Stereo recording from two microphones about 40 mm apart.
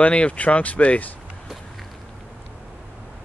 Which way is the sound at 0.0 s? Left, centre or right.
Left.